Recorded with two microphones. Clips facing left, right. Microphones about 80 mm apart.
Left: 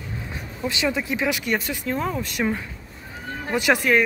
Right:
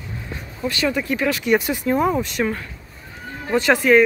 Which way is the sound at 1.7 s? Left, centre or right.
Centre.